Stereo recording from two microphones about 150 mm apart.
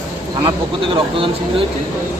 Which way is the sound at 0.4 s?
35° right (ahead or behind).